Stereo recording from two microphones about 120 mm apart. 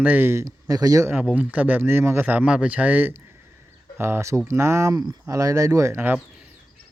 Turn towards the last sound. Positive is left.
turn(degrees=-10)  # may be behind; listen again after turning